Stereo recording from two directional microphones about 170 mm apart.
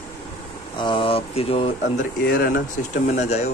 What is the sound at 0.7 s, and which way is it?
Speech, 30° left (ahead or behind).